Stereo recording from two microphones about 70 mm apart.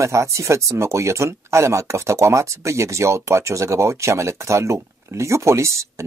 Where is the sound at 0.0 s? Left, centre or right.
Right.